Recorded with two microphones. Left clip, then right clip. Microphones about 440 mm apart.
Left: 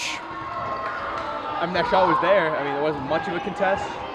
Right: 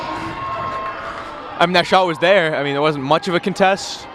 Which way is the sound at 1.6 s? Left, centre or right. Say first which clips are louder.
Right 7 dB; right.